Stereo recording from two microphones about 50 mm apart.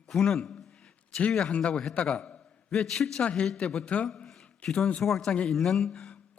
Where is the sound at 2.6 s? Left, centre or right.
Centre.